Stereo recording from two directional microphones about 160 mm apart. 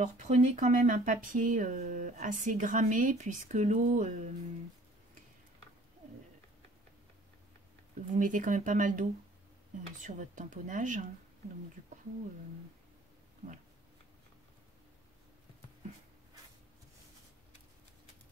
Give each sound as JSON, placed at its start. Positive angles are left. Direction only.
{"t": 0.0, "sound": "speech", "side_deg": -50}
{"t": 8.2, "sound": "speech", "side_deg": -55}
{"t": 10.0, "sound": "speech", "side_deg": -50}